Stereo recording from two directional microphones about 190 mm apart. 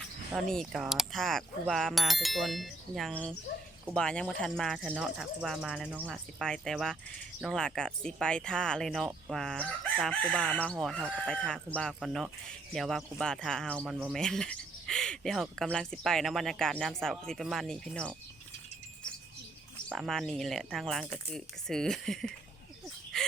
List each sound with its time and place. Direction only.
0.3 s speech: 5° left (ahead or behind)
19.9 s speech: centre (ahead or behind)
23.1 s a sound: centre (ahead or behind)